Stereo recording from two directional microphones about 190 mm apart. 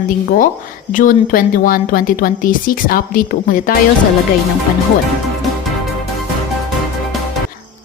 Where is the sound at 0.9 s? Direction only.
45° left (ahead or behind).